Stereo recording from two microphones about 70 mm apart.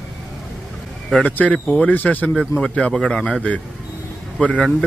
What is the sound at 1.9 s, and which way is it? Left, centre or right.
Speech, left.